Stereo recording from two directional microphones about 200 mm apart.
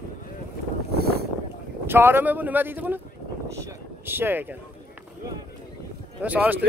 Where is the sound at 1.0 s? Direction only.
50° right (ahead or behind).